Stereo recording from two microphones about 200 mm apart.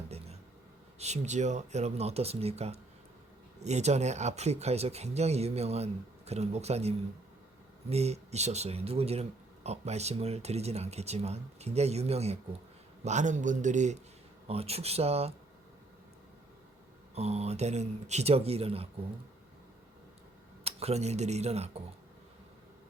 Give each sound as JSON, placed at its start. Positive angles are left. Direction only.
{"t": 0.9, "sound": "speech", "side_deg": -35}
{"t": 17.2, "sound": "speech", "side_deg": -30}
{"t": 20.7, "sound": "speech", "side_deg": -30}